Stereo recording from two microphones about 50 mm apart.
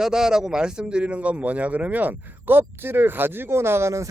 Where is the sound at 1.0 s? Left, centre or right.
Right.